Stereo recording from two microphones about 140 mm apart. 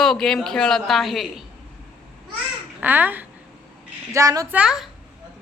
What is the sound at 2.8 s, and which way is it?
Speech, 15° right (ahead or behind).